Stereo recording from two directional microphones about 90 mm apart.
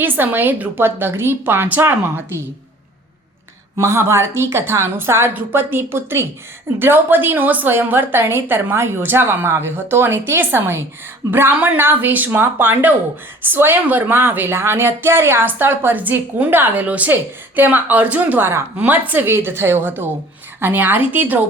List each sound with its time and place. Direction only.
0.0 s a woman's voice: 20° right (ahead or behind)
3.8 s a woman's voice: 30° right (ahead or behind)